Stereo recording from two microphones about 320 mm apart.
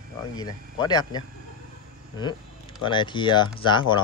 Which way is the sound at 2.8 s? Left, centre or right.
Centre.